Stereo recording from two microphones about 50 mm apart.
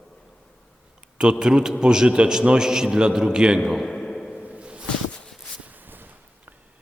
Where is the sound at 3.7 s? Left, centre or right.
Centre.